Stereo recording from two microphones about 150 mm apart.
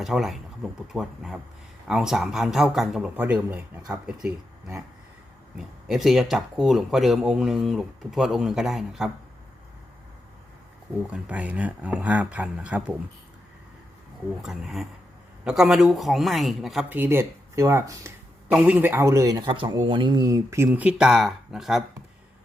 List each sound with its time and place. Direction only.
0.0 s speech: centre (ahead or behind)
5.5 s speech: centre (ahead or behind)
11.1 s speech: 10° right (ahead or behind)
14.4 s speech: centre (ahead or behind)
16.9 s speech: 15° right (ahead or behind)